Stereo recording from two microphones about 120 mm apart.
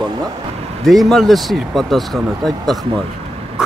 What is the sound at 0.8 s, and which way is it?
Speech, centre (ahead or behind).